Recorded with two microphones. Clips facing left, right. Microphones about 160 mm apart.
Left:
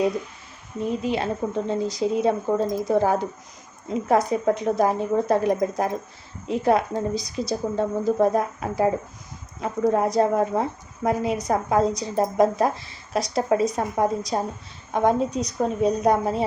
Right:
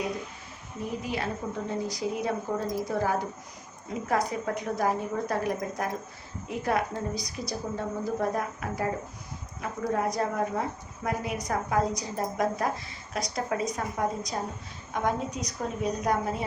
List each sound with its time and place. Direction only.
0.9 s a woman's voice: 25° left (ahead or behind)
9.9 s a woman's voice: 25° left (ahead or behind)